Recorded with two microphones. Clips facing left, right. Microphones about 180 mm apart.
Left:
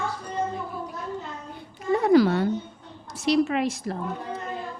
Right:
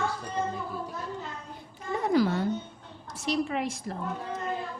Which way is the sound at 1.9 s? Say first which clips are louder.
Left 7 dB; 80° left.